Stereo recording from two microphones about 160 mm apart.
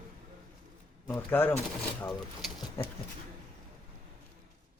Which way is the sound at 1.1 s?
15° left (ahead or behind).